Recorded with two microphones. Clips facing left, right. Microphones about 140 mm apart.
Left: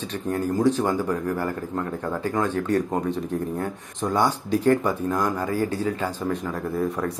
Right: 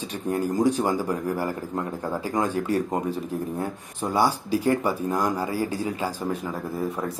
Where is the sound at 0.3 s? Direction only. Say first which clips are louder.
Left 1 dB; 15° right (ahead or behind).